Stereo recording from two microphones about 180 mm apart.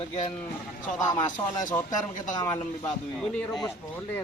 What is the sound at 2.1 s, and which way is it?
Speech, 45° left (ahead or behind).